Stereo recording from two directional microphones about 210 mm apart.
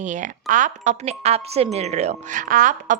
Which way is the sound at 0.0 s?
35° right (ahead or behind).